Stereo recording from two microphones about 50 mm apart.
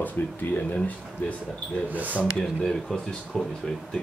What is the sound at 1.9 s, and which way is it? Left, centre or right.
Speech, right.